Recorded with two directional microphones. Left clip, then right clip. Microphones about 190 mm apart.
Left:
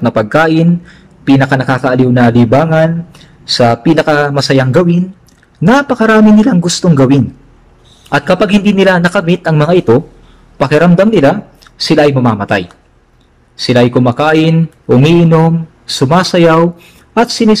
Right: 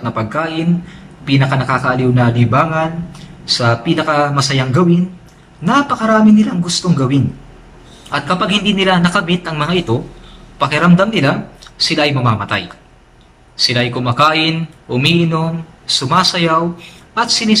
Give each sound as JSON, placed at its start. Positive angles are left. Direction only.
{"t": 0.0, "sound": "a man's voice", "side_deg": 55}